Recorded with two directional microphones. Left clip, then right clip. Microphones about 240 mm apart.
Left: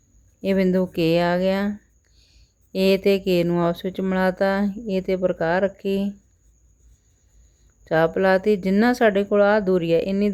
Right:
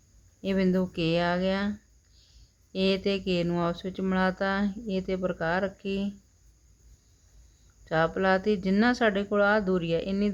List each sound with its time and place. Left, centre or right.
0.4 s speech: left
7.9 s speech: left